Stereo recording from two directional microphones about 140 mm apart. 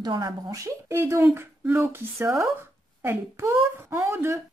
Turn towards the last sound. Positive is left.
turn(degrees=-20)  # may be behind; listen again after turning